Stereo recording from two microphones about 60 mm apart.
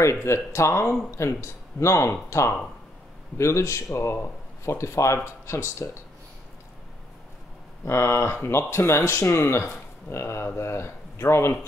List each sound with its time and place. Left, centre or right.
0.0 s speech: left
7.8 s speech: left